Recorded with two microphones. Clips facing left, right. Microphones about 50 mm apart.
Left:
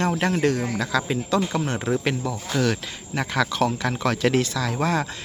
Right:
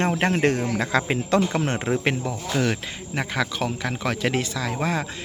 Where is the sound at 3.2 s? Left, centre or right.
Centre.